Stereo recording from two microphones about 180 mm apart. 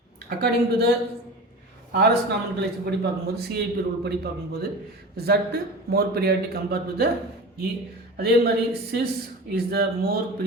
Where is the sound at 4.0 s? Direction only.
65° right (ahead or behind).